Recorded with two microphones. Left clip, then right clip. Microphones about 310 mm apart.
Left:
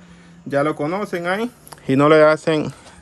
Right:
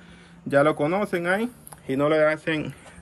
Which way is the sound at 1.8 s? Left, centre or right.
Left.